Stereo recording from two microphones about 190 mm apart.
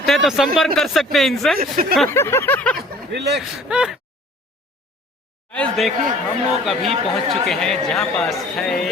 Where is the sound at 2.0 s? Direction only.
10° left (ahead or behind).